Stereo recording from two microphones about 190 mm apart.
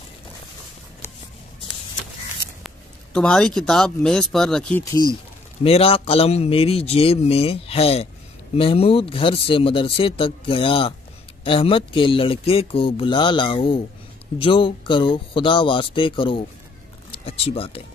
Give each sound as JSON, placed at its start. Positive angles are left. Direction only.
{"t": 2.6, "sound": "speech", "side_deg": 5}
{"t": 5.6, "sound": "a man's voice", "side_deg": 30}